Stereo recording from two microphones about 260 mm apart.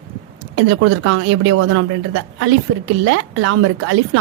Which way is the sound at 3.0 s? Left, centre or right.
Right.